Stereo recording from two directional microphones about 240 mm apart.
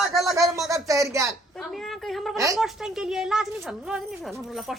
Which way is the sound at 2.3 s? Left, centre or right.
Centre.